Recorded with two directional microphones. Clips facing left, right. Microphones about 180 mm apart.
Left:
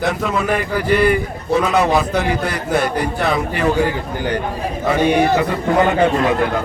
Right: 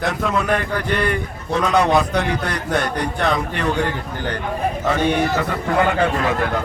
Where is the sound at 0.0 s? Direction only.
Centre (ahead or behind); by 6.3 s 20° left (ahead or behind).